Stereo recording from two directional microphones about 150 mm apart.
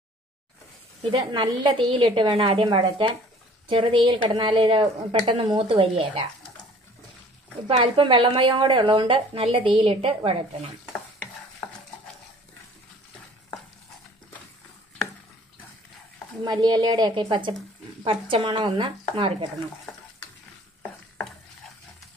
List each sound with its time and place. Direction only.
1.3 s a woman's voice: 35° right (ahead or behind)
7.6 s a woman's voice: 35° right (ahead or behind)
11.6 s stir: 5° left (ahead or behind)
16.4 s a woman's voice: 30° right (ahead or behind)